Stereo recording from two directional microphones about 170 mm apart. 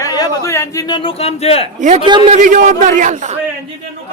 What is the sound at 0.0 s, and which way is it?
A man's voice, 20° left (ahead or behind).